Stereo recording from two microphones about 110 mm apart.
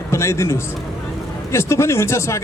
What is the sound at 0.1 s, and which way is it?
A man's voice, 25° left (ahead or behind).